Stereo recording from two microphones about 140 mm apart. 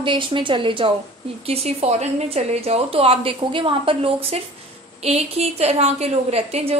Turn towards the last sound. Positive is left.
turn(degrees=-50)  # may be behind; listen again after turning